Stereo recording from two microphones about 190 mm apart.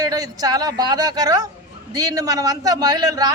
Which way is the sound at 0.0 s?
20° right (ahead or behind).